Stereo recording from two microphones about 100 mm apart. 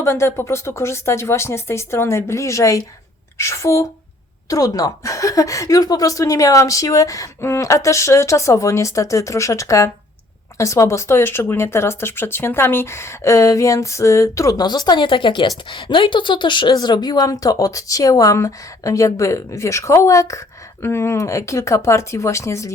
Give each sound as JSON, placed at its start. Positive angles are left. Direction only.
{"t": 0.0, "sound": "a woman's voice", "side_deg": 25}
{"t": 14.6, "sound": "a woman's voice", "side_deg": 45}